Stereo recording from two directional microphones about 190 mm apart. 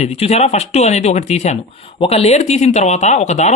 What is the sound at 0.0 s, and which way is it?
Speech, 35° left (ahead or behind).